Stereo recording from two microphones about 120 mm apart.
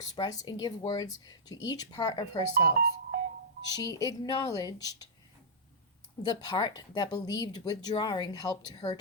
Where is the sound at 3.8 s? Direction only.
30° left (ahead or behind).